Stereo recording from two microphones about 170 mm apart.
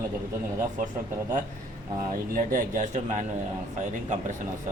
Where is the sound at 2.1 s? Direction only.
50° right (ahead or behind).